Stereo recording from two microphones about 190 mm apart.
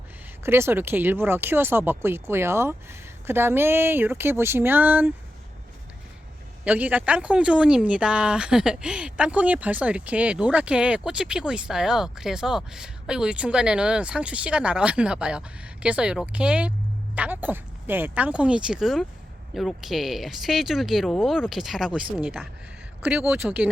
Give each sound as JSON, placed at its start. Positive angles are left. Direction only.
{"t": 0.4, "sound": "speech", "side_deg": -10}
{"t": 6.7, "sound": "speech", "side_deg": -10}